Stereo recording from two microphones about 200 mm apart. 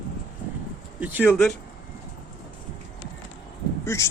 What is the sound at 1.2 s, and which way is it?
Speech, 5° left (ahead or behind).